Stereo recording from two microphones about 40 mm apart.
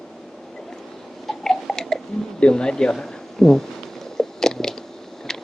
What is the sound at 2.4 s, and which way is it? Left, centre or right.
Speech, left.